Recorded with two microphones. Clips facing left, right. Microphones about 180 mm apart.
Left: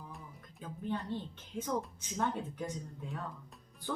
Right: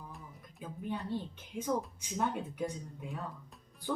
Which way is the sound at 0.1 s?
Centre (ahead or behind).